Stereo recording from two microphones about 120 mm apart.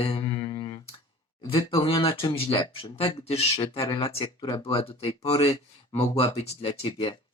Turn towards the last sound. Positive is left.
turn(degrees=45)  # may be behind; listen again after turning